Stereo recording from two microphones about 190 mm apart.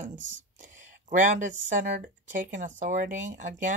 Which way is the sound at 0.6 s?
40° right (ahead or behind).